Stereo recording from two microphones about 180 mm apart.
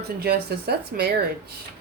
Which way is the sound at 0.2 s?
60° right (ahead or behind).